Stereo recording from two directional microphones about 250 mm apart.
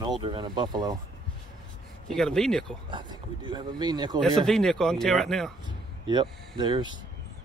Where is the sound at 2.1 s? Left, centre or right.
Centre.